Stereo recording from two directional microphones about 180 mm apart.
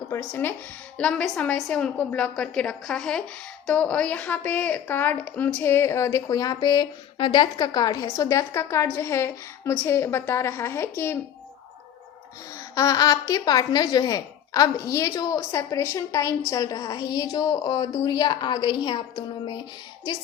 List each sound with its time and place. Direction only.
0.1 s a woman's voice: 10° left (ahead or behind)
12.5 s a woman's voice: 20° left (ahead or behind)